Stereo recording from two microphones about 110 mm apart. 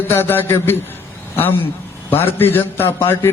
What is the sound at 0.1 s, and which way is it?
Speech, 20° left (ahead or behind).